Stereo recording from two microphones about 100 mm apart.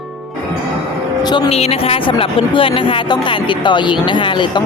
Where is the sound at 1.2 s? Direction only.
45° left (ahead or behind).